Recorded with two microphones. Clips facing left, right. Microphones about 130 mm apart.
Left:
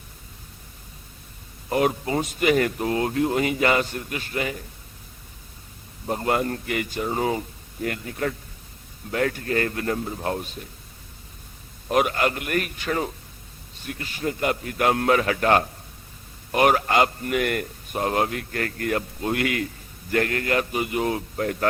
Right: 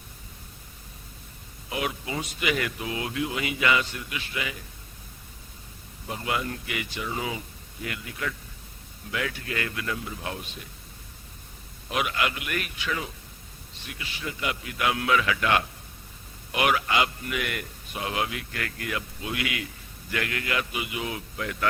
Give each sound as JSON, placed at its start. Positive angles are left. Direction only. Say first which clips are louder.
{"t": 1.7, "sound": "a man's voice", "louder": "left 8 dB", "side_deg": 45}
{"t": 6.1, "sound": "a man's voice", "louder": "left 7 dB", "side_deg": 45}
{"t": 11.9, "sound": "a man's voice", "louder": "left 6 dB", "side_deg": 45}